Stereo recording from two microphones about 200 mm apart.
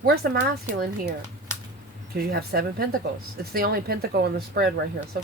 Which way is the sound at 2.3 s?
50° right (ahead or behind).